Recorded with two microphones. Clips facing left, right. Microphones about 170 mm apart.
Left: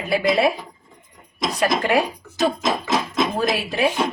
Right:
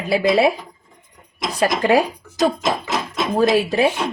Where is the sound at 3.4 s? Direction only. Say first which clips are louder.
Right 6 dB; 40° right (ahead or behind).